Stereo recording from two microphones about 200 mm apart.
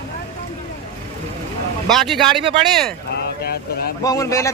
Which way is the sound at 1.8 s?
Centre (ahead or behind).